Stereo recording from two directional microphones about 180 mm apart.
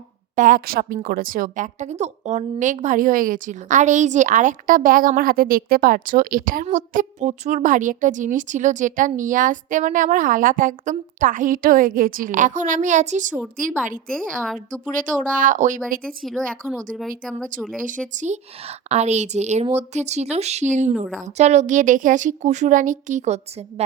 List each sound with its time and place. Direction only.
0.3 s a woman's voice: 50° right (ahead or behind)
14.1 s a woman's voice: 5° left (ahead or behind)
14.8 s a woman's voice: 45° right (ahead or behind)
16.0 s a woman's voice: centre (ahead or behind)
17.7 s a woman's voice: 45° right (ahead or behind)